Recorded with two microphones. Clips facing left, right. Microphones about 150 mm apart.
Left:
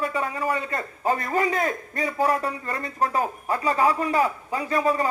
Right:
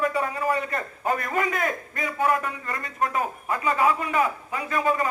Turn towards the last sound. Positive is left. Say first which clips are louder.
# left 2 dB
turn(degrees=35)  # may be behind; listen again after turning